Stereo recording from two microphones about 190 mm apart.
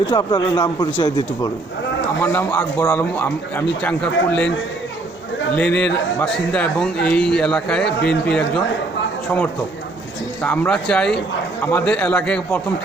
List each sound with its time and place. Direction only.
0.1 s a man's voice: 20° left (ahead or behind)
2.2 s a man's voice: 10° left (ahead or behind)
5.5 s a man's voice: 5° left (ahead or behind)
10.4 s a man's voice: 10° left (ahead or behind)